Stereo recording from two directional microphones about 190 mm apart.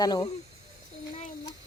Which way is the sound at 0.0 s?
20° left (ahead or behind).